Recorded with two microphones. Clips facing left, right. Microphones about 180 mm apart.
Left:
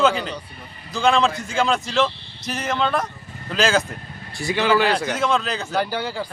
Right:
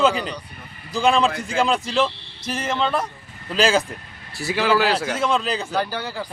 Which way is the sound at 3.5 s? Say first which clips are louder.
Right 1 dB; 30° right (ahead or behind).